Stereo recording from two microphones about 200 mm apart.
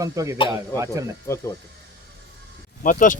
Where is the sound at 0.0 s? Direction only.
15° right (ahead or behind).